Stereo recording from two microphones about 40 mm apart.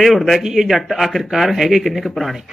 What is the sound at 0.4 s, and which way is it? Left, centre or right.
Speech, centre.